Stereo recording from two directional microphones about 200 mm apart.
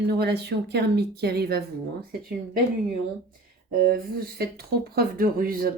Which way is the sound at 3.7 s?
45° right (ahead or behind).